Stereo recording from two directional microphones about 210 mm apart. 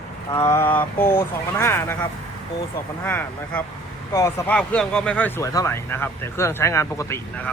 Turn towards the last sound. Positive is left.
turn(degrees=10)  # may be behind; listen again after turning